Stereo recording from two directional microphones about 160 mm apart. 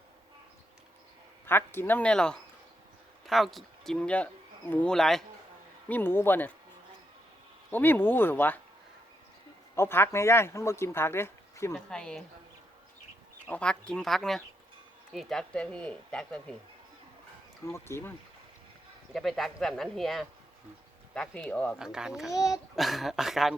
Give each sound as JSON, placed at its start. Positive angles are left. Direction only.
{"t": 1.5, "sound": "speech", "side_deg": 15}
{"t": 5.9, "sound": "speech", "side_deg": 15}
{"t": 7.7, "sound": "speech", "side_deg": 10}
{"t": 9.7, "sound": "speech", "side_deg": 15}
{"t": 11.9, "sound": "speech", "side_deg": 5}
{"t": 13.5, "sound": "speech", "side_deg": 5}
{"t": 17.7, "sound": "speech", "side_deg": 15}
{"t": 19.1, "sound": "speech", "side_deg": 0}
{"t": 21.8, "sound": "speech", "side_deg": -5}
{"t": 22.3, "sound": "a child's voice", "side_deg": 20}
{"t": 22.7, "sound": "speech", "side_deg": 0}